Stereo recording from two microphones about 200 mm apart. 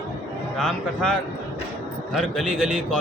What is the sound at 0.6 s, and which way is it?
Speech, 5° left (ahead or behind).